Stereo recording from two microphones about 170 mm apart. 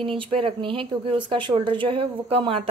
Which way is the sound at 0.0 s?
35° right (ahead or behind).